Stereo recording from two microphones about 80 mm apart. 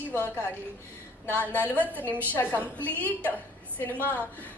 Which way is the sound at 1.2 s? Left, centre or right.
Left.